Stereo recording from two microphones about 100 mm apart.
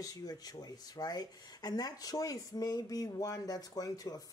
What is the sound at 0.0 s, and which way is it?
Speech, 40° left (ahead or behind).